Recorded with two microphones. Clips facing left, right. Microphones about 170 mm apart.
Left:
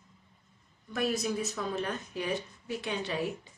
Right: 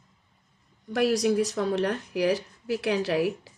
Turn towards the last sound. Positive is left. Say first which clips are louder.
# right 8 dB
turn(degrees=-90)